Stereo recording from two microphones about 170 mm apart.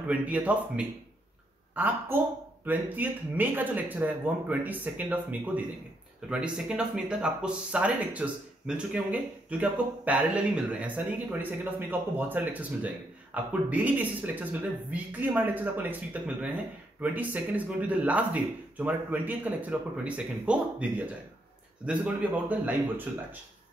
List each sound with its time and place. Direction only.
0.0 s speech: 10° right (ahead or behind)